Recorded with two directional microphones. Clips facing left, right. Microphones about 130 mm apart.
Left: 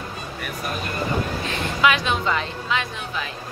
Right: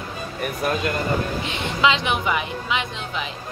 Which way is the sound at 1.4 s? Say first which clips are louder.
Left 2 dB; 20° right (ahead or behind).